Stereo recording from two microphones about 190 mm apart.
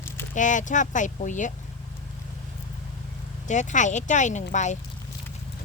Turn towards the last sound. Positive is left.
turn(degrees=40)  # may be behind; listen again after turning